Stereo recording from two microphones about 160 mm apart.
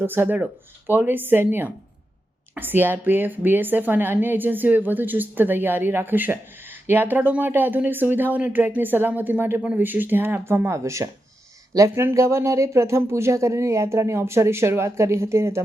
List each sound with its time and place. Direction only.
0.0 s a woman's voice: 15° right (ahead or behind)